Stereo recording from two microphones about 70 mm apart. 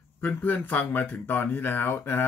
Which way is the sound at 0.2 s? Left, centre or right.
Left.